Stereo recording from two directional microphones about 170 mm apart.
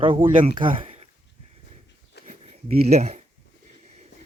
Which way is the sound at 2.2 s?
40° right (ahead or behind).